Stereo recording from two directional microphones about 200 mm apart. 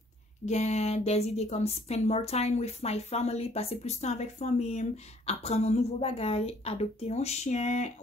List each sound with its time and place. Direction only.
0.5 s a woman's voice: 35° left (ahead or behind)